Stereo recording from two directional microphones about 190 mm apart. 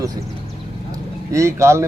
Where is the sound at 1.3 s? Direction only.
15° right (ahead or behind).